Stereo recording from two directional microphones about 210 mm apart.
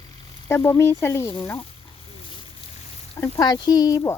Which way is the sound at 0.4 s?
10° left (ahead or behind).